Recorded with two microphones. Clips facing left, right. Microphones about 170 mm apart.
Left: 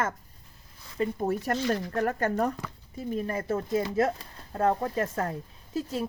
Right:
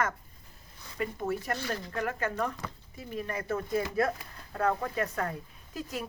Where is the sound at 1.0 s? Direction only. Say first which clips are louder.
Left 4 dB; 35° left (ahead or behind).